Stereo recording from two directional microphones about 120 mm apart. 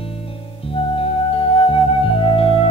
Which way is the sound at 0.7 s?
50° left (ahead or behind).